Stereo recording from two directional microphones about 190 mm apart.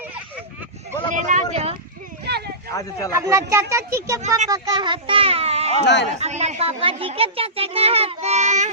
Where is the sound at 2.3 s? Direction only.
60° right (ahead or behind).